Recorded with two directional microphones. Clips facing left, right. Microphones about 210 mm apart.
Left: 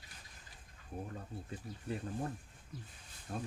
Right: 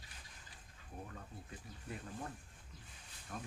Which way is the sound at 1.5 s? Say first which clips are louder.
Left 8 dB; 30° left (ahead or behind).